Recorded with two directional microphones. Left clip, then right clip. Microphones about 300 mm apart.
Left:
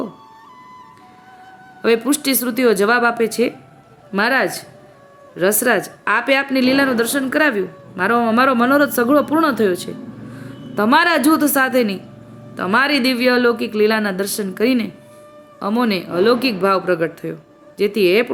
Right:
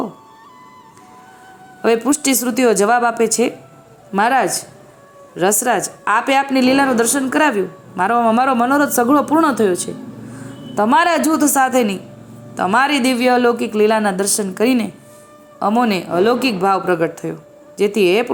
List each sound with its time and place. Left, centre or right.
1.8 s a woman's voice: centre